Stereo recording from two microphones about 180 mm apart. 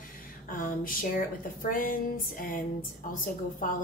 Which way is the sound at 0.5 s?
50° left (ahead or behind).